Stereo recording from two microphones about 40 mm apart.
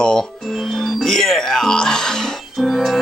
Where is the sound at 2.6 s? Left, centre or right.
Centre.